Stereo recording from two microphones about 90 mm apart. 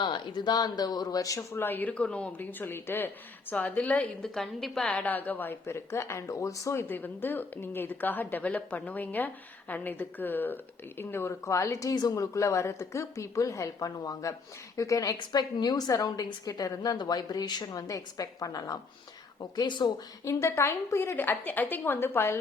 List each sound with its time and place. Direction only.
0.0 s a woman's voice: 55° left (ahead or behind); by 1.9 s 20° left (ahead or behind)
1.9 s a woman's voice: 10° left (ahead or behind)
4.4 s a woman's voice: 5° left (ahead or behind); by 6.8 s 35° left (ahead or behind)
6.8 s a woman's voice: 20° left (ahead or behind); by 18.8 s 40° left (ahead or behind)
19.4 s speech: 55° left (ahead or behind)
20.2 s a woman's voice: 30° left (ahead or behind)